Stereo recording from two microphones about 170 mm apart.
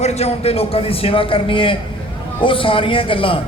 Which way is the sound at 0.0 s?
40° left (ahead or behind).